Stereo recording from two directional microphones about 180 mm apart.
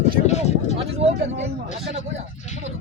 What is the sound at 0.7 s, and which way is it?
Speech, 35° right (ahead or behind).